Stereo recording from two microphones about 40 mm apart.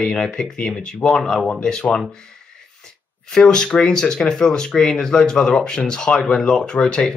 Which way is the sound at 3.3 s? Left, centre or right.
Centre.